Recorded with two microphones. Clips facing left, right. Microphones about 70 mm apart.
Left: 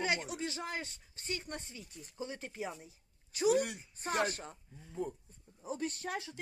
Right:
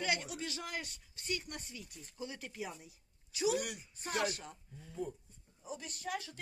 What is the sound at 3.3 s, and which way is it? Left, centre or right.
Speech, left.